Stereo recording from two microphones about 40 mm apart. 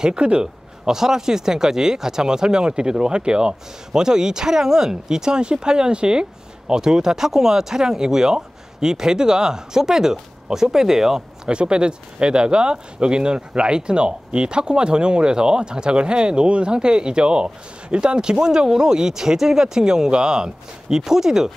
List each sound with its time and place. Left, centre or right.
0.0 s speech: right
0.8 s speech: centre
11.4 s speech: right